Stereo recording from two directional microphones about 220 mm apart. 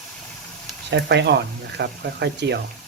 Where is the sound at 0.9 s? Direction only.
50° right (ahead or behind).